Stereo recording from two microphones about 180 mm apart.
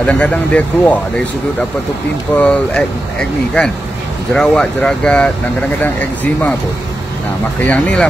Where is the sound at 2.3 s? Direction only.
5° left (ahead or behind).